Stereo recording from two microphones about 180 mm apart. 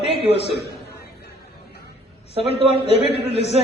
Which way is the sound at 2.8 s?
35° left (ahead or behind).